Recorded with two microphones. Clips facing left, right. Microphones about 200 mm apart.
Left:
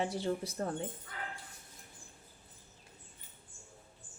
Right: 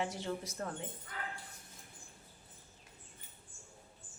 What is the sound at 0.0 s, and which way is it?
Speech, 35° left (ahead or behind).